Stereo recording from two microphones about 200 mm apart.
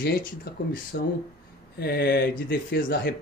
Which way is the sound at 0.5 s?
50° left (ahead or behind).